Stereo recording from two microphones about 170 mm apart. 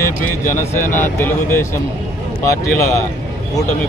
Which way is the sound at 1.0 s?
10° left (ahead or behind).